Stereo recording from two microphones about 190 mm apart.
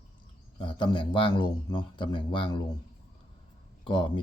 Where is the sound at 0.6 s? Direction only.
25° left (ahead or behind).